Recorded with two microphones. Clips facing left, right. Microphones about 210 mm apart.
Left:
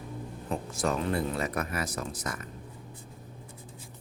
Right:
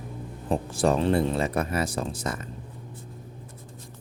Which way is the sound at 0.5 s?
30° right (ahead or behind).